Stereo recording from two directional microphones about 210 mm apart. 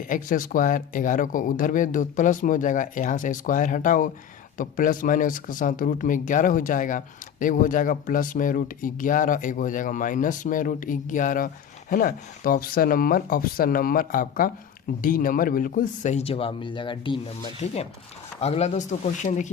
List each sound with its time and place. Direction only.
0.1 s speech: 40° left (ahead or behind)